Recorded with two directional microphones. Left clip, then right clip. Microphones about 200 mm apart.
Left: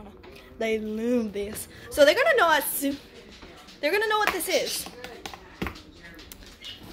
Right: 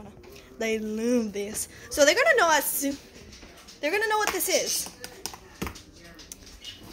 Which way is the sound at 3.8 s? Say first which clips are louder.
Left 1 dB; centre (ahead or behind).